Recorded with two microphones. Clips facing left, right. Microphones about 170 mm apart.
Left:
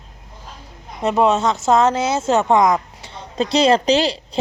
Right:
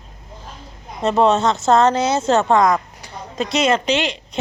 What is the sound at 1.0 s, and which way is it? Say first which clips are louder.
Speech: right 1 dB; 10° left (ahead or behind).